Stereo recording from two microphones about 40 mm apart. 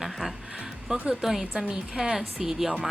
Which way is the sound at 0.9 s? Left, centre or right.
Centre.